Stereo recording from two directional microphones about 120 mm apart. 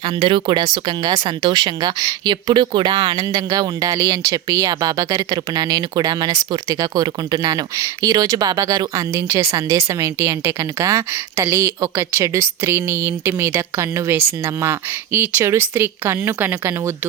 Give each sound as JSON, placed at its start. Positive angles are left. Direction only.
{"t": 0.0, "sound": "speech", "side_deg": -45}